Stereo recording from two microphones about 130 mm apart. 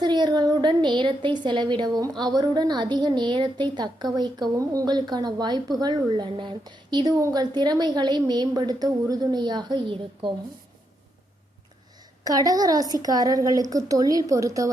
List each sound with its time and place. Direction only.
0.0 s speech: 35° right (ahead or behind)
12.2 s a woman's voice: 30° right (ahead or behind)